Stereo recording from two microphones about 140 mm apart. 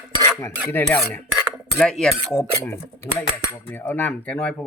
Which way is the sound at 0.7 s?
15° left (ahead or behind).